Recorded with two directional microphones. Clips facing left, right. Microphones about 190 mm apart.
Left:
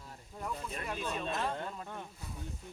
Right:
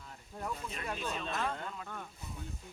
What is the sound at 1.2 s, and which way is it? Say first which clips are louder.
Speech: left 1 dB; 35° left (ahead or behind).